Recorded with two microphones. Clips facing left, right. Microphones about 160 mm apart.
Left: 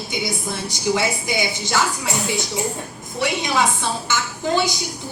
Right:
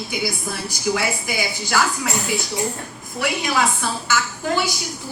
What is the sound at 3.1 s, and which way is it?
A woman's voice, 25° left (ahead or behind).